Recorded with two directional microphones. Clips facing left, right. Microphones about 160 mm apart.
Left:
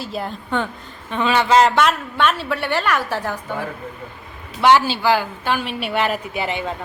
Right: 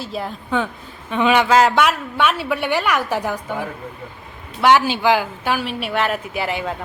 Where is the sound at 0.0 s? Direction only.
Centre (ahead or behind).